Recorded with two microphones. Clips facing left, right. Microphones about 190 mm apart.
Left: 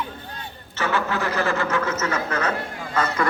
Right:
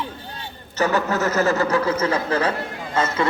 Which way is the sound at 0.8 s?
40° right (ahead or behind).